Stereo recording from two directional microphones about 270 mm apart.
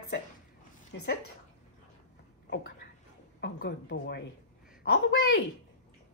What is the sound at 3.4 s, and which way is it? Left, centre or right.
Speech, left.